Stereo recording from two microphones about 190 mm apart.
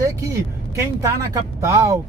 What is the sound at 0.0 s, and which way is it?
Vehicle, 15° right (ahead or behind).